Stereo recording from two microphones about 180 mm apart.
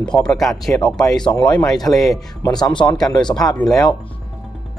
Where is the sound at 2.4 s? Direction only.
20° left (ahead or behind).